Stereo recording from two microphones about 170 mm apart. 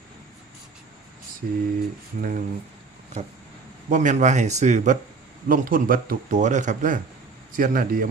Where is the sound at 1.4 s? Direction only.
60° right (ahead or behind).